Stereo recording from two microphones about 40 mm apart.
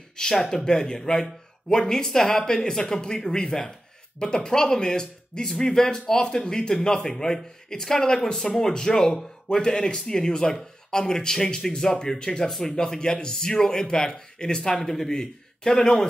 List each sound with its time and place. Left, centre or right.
0.1 s a man's voice: centre